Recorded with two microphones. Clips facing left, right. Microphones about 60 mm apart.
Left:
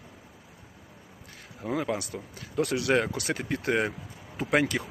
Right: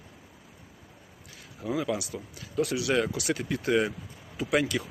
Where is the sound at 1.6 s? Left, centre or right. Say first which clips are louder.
Even; left.